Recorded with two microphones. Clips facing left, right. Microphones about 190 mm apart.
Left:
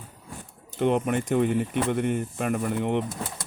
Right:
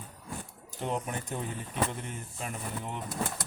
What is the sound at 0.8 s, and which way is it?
Speech, 80° left.